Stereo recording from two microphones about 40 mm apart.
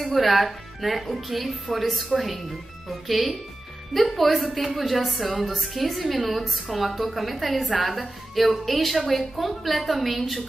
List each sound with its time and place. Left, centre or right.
0.0 s a woman's voice: centre